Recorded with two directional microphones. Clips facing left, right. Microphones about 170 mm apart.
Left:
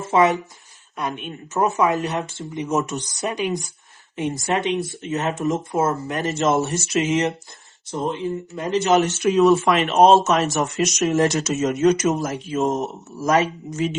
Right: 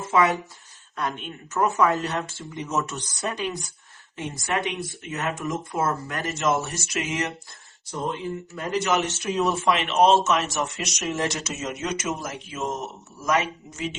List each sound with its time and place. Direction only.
0.1 s a woman's voice: 20° left (ahead or behind)
9.2 s speech: 90° left
9.6 s speech: 40° left (ahead or behind)